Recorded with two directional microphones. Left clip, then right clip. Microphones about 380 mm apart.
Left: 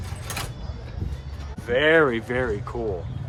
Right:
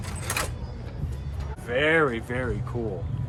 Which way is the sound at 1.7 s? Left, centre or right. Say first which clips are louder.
Left 4 dB; centre.